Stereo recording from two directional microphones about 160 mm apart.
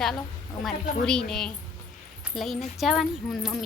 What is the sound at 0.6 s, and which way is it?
Speech, 5° left (ahead or behind).